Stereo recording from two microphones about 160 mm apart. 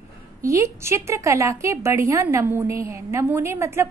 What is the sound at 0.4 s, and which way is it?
A woman's voice, 20° right (ahead or behind).